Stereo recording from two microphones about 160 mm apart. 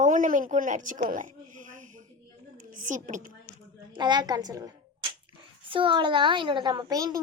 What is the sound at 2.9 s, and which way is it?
Speech, 50° right (ahead or behind).